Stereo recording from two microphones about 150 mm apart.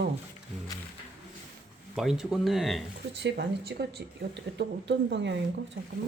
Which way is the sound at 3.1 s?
90° right.